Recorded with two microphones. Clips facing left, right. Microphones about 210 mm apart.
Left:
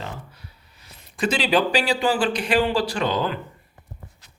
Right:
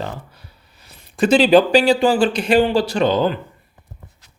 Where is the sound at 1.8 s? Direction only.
25° right (ahead or behind).